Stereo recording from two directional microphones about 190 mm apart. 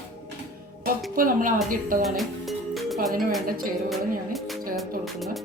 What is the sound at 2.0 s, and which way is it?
Music, centre (ahead or behind).